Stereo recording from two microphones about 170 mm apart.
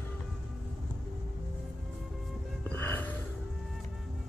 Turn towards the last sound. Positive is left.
turn(degrees=10)  # may be behind; listen again after turning